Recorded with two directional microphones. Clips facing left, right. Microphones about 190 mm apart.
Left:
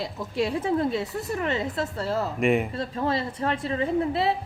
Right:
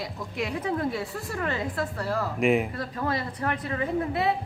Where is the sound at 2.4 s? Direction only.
Centre (ahead or behind).